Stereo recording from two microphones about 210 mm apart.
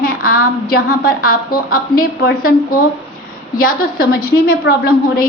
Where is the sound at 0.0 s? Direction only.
45° left (ahead or behind).